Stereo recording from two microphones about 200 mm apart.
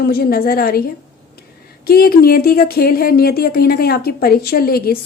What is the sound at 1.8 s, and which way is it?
Speech, 50° left (ahead or behind).